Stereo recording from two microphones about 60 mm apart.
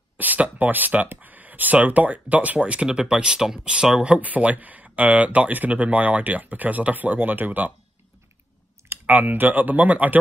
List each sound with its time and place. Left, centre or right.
0.2 s speech: right
9.0 s speech: right